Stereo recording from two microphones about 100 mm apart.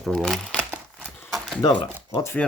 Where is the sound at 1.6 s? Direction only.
50° left (ahead or behind).